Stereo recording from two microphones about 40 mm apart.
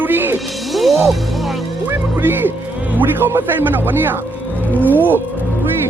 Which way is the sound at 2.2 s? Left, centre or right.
Right.